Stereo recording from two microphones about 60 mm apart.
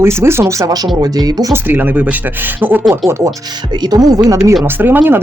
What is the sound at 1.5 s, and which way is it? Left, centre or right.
Speech, right.